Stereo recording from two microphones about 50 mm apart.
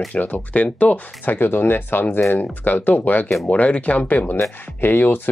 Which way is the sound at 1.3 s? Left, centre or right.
Left.